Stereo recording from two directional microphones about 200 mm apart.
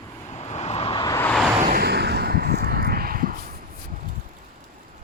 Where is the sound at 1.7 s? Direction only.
50° right (ahead or behind).